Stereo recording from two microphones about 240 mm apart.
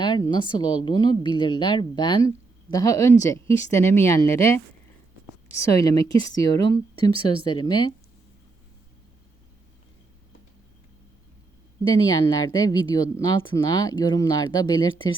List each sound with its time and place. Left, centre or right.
0.0 s a woman's voice: centre
11.9 s speech: centre